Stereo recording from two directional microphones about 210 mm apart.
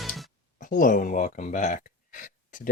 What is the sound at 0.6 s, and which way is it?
Speech, 40° left (ahead or behind).